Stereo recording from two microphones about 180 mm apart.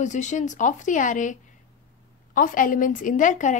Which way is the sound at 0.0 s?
40° left (ahead or behind).